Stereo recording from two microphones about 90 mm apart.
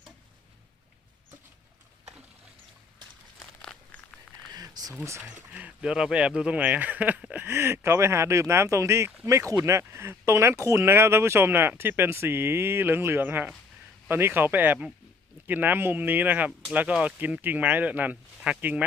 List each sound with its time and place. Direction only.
3.3 s crumpling: 5° left (ahead or behind)
4.5 s a sound: 45° right (ahead or behind)
5.2 s speech: 15° right (ahead or behind)